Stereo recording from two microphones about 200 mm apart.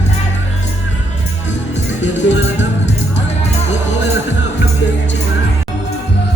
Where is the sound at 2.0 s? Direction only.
65° left (ahead or behind).